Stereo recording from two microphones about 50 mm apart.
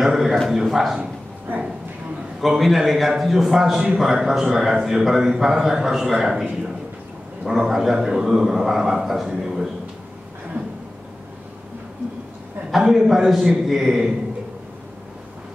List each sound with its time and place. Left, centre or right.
0.0 s a sound: centre
0.5 s a man's voice: centre
2.4 s a man's voice: centre
7.4 s a man's voice: centre
10.6 s a sound: right
12.7 s a man's voice: centre